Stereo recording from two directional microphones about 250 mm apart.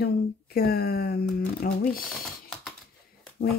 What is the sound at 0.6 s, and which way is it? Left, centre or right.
Speech, left.